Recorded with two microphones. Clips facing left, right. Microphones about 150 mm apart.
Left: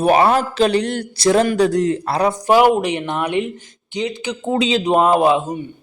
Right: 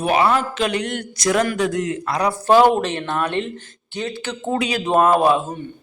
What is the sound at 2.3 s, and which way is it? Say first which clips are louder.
Speech: right 1 dB; 15° left (ahead or behind).